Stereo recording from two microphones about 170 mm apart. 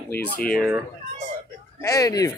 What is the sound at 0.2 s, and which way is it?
Speech, 60° left (ahead or behind).